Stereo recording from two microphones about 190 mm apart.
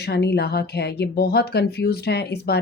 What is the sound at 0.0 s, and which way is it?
Speech, 60° left (ahead or behind).